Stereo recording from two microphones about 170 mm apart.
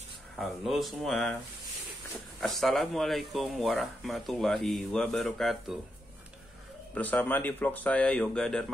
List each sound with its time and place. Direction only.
0.4 s speech: centre (ahead or behind)
2.4 s speech: centre (ahead or behind)
6.9 s speech: 10° left (ahead or behind)